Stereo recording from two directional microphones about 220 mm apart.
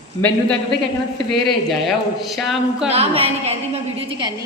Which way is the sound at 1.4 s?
Centre (ahead or behind).